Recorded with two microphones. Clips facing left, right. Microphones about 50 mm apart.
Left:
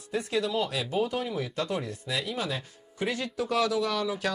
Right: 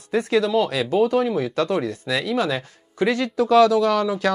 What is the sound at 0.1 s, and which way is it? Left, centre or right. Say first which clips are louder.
Speech: right 9 dB; right.